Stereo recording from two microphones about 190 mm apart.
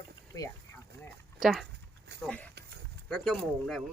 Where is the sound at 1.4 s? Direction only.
Centre (ahead or behind).